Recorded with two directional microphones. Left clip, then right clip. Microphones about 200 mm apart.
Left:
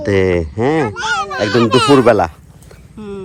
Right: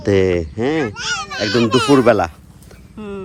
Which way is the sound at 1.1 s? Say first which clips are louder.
Left 5 dB; 25° left (ahead or behind).